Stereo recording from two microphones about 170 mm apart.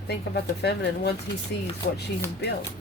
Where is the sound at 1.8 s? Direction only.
55° left (ahead or behind).